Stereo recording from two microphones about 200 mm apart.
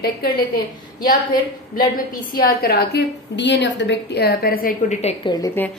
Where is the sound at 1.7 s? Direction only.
45° left (ahead or behind).